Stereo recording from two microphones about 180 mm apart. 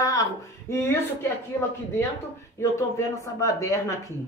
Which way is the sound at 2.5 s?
15° left (ahead or behind).